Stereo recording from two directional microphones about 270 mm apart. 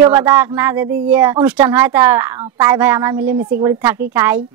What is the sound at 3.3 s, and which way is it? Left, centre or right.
Speech, right.